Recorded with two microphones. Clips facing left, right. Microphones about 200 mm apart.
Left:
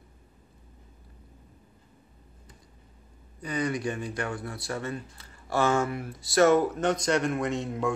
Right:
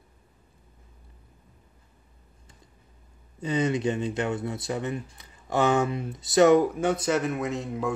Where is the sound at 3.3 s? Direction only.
25° right (ahead or behind).